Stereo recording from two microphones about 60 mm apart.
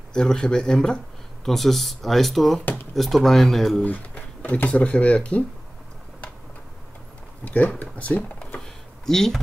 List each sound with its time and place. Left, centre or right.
0.1 s speech: centre
2.6 s drawer open or close: left
2.9 s speech: centre
3.8 s speech: left
7.4 s speech: left
8.5 s a sound: centre